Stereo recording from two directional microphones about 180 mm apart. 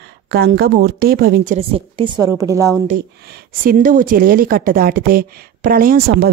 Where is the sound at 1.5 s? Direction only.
30° right (ahead or behind).